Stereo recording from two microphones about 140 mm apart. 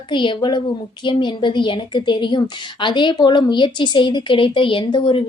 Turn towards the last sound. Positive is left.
turn(degrees=40)  # may be behind; listen again after turning